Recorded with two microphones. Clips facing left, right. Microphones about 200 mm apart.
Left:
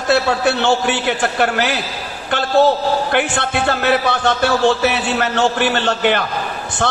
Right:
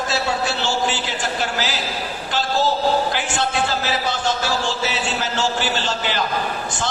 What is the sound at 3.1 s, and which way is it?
A man's voice, 60° left (ahead or behind).